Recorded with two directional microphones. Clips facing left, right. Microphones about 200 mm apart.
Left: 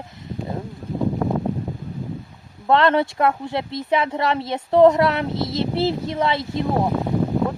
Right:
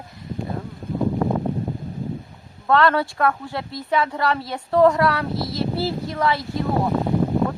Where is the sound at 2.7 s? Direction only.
20° left (ahead or behind).